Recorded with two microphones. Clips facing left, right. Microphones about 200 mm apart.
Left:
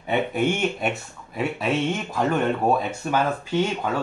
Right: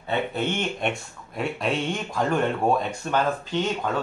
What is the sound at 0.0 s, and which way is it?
A man's voice, 15° left (ahead or behind).